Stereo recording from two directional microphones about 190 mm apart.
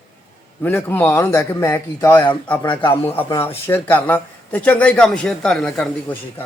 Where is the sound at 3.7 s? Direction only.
10° left (ahead or behind).